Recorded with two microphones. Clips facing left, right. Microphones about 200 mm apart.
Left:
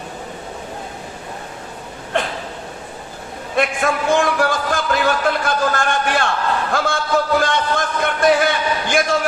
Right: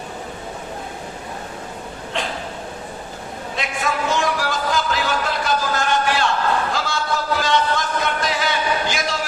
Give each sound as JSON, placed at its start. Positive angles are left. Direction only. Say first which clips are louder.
{"t": 3.5, "sound": "music", "louder": "left 6 dB", "side_deg": 55}